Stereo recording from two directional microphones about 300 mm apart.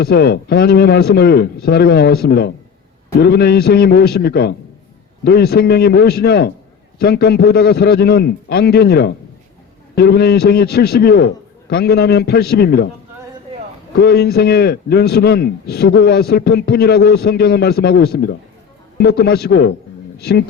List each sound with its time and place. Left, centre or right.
0.0 s a man's voice: left
14.0 s a man's voice: left